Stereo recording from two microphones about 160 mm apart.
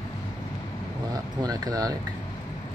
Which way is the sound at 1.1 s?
25° right (ahead or behind).